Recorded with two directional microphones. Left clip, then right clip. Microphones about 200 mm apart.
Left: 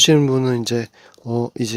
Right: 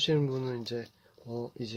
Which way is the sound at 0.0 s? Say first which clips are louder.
Left 15 dB; 50° left (ahead or behind).